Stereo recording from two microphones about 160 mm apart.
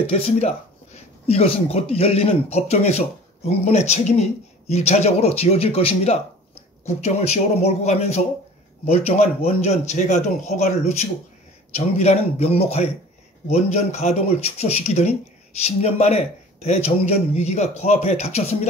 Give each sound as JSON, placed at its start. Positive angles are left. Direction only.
{"t": 0.0, "sound": "speech", "side_deg": 40}